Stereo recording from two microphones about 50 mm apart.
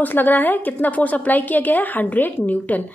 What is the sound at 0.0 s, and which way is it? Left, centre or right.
A woman's voice, left.